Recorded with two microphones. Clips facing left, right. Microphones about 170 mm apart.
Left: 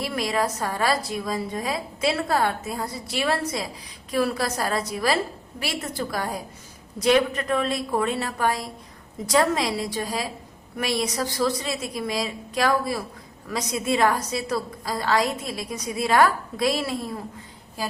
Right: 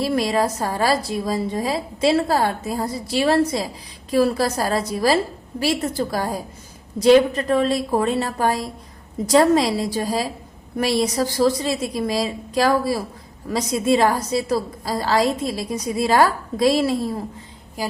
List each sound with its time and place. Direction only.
0.0 s a woman's voice: 35° right (ahead or behind)